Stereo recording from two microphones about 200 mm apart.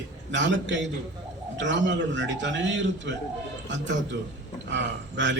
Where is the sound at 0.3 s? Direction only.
65° right (ahead or behind).